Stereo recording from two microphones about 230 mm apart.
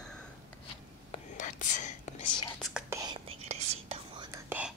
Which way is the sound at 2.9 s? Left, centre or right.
Centre.